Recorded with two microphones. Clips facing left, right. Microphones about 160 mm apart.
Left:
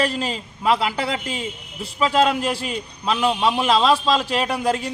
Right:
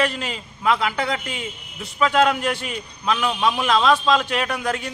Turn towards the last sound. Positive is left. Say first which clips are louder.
# left 3 dB
turn(degrees=30)  # may be behind; listen again after turning